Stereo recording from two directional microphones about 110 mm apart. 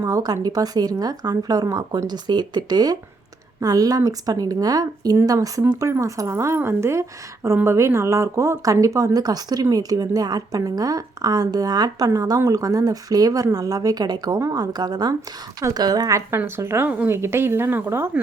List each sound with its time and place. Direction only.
0.0 s a woman's voice: 35° right (ahead or behind)